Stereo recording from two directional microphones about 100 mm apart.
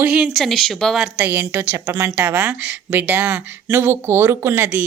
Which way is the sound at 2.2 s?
10° right (ahead or behind).